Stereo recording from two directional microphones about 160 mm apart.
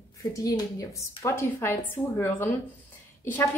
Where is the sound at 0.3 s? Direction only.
20° left (ahead or behind).